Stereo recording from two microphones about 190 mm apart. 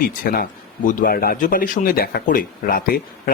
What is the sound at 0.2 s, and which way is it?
Speech, 50° left (ahead or behind).